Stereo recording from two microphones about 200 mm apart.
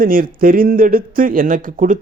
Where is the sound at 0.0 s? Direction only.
45° right (ahead or behind).